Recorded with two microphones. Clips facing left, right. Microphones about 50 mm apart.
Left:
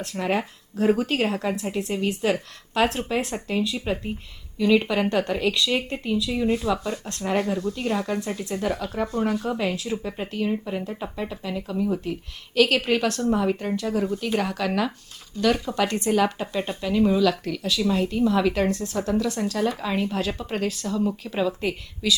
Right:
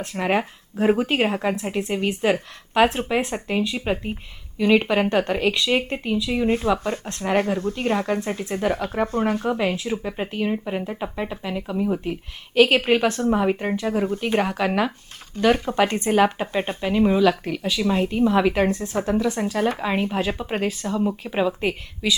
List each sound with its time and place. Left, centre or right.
0.0 s speech: right
19.6 s speech: right
19.9 s speech: right